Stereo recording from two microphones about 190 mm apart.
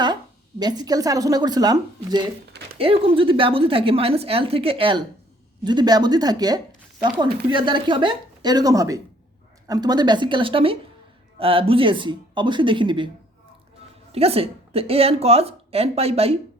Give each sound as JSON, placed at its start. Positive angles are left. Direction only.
{"t": 0.6, "sound": "a woman's voice", "side_deg": -20}
{"t": 14.1, "sound": "a woman's voice", "side_deg": -30}